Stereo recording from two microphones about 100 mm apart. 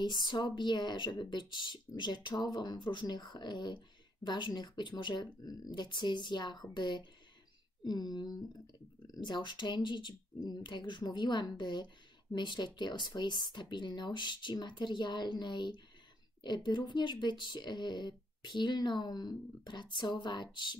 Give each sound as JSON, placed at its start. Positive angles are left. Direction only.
{"t": 0.0, "sound": "speech", "side_deg": 50}